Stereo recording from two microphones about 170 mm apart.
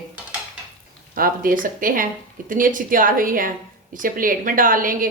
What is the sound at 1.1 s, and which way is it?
A woman's voice, 55° right (ahead or behind).